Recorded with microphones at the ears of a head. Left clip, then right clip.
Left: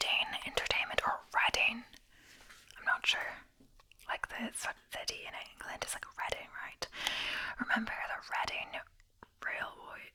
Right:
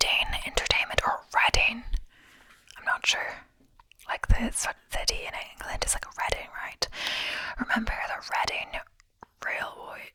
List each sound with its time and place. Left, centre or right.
0.0 s whispering: right